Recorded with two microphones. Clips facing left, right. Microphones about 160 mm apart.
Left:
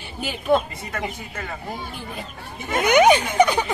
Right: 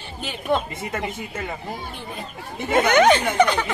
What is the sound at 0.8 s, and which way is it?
Speech, 25° right (ahead or behind).